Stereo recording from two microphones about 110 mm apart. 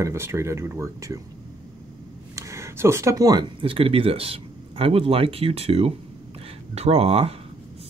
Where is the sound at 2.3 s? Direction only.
25° right (ahead or behind); by 7.3 s 65° right (ahead or behind).